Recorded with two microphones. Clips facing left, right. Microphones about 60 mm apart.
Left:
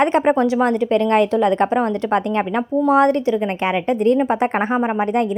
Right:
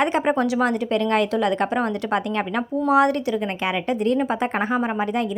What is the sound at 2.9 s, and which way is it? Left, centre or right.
A woman's voice, left.